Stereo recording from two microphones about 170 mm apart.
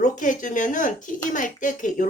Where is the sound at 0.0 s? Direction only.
50° left (ahead or behind).